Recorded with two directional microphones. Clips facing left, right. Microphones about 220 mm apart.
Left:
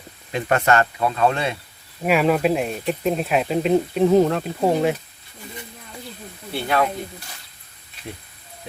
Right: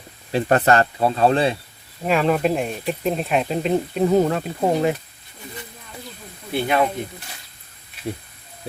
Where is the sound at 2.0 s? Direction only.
5° left (ahead or behind).